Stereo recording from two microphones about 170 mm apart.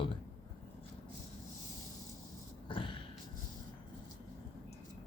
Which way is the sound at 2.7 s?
30° left (ahead or behind).